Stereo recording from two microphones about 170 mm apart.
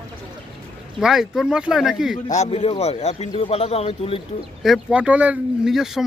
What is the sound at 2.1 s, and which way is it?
Speech, 45° left (ahead or behind).